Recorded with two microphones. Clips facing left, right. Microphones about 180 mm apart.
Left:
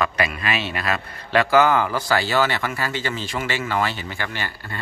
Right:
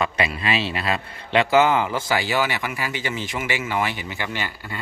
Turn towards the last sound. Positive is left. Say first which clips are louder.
# right 1 dB
turn(degrees=-15)  # may be behind; listen again after turning